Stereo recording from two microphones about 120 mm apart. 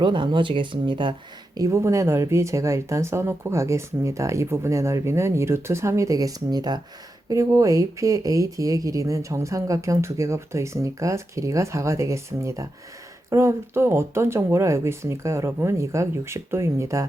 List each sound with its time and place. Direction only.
0.0 s speech: 40° right (ahead or behind)
1.5 s speech: 25° right (ahead or behind)